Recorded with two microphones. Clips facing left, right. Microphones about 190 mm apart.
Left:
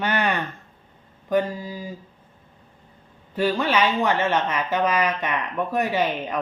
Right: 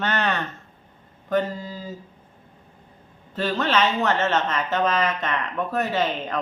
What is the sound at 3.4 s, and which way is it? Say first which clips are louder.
A woman's voice: left 1 dB; 10° left (ahead or behind).